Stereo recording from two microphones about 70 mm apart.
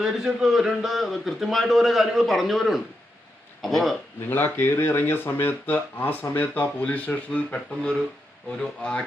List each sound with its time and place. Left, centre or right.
0.0 s a man's voice: centre
4.3 s speech: left
7.8 s speech: centre